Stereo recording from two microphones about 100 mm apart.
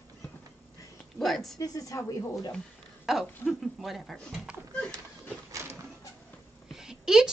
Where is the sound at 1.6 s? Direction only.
35° left (ahead or behind).